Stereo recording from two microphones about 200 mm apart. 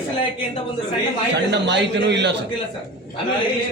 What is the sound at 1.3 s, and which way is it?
A man's voice, 60° right (ahead or behind).